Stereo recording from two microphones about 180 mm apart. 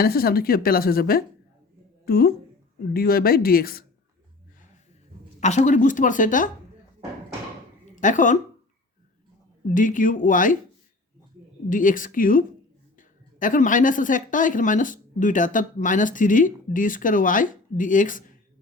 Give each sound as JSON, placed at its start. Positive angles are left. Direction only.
{"t": 0.0, "sound": "a woman's voice", "side_deg": 55}
{"t": 5.4, "sound": "speech", "side_deg": 40}
{"t": 8.0, "sound": "speech", "side_deg": 45}
{"t": 9.6, "sound": "speech", "side_deg": 45}
{"t": 11.7, "sound": "speech", "side_deg": 50}